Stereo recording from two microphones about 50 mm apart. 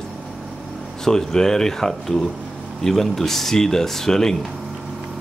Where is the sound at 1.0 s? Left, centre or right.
Centre.